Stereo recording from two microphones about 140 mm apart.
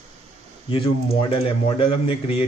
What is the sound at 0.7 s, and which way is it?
Speech, 40° left (ahead or behind).